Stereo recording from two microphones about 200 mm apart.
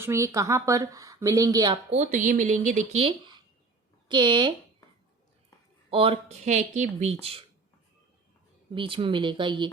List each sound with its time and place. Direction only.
0.0 s speech: 15° right (ahead or behind)
2.0 s speech: 40° right (ahead or behind); by 4.5 s 25° right (ahead or behind)
5.9 s speech: 25° right (ahead or behind)
8.7 s speech: 25° right (ahead or behind)